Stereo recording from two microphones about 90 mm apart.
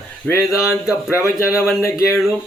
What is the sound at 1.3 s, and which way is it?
Speech, 5° right (ahead or behind).